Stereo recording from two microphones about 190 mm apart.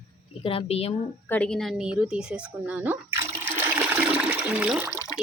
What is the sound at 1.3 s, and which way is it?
A woman's voice, 5° left (ahead or behind).